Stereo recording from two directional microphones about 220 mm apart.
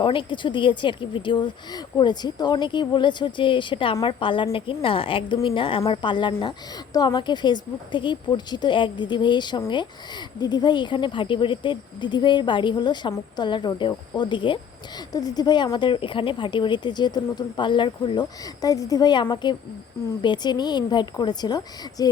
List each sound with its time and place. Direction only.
0.0 s speech: 20° left (ahead or behind)